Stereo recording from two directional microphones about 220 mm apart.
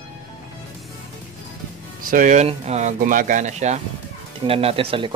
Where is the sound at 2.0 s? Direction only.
40° right (ahead or behind); by 5.1 s 25° right (ahead or behind).